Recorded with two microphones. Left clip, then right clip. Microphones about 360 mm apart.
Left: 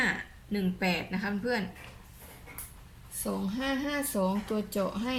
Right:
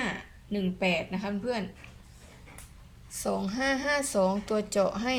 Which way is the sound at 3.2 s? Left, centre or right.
Centre.